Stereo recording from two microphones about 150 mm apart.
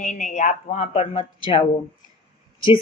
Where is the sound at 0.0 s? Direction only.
55° left (ahead or behind); by 1.6 s 40° left (ahead or behind).